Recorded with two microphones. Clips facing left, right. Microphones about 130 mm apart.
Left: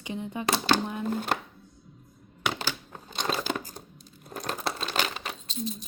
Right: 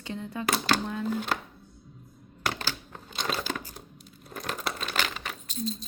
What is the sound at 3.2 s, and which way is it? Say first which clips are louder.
Crumpling: left 2 dB; 30° left (ahead or behind).